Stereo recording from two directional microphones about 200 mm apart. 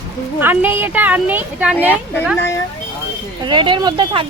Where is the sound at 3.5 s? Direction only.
25° right (ahead or behind).